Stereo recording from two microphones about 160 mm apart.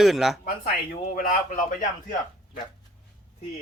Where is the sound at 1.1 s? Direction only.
65° left (ahead or behind).